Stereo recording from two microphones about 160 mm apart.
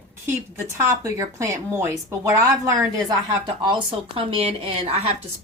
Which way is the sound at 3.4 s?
30° right (ahead or behind).